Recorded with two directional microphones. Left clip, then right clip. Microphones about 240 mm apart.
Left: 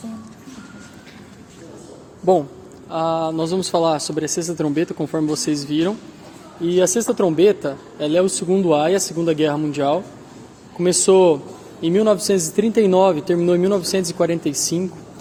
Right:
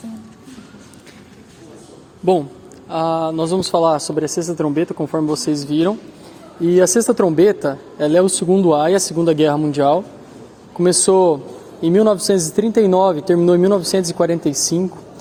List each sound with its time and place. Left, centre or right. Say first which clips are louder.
2.2 s speech: even; centre
2.9 s speech: right 2 dB; right
6.7 s speech: right 4 dB; right